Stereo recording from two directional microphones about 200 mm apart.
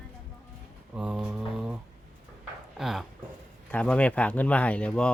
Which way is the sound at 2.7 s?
Centre (ahead or behind).